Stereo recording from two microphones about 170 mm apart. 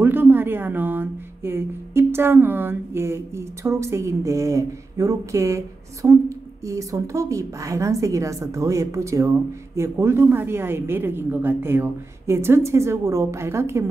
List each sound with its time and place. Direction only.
0.0 s a woman's voice: 10° right (ahead or behind)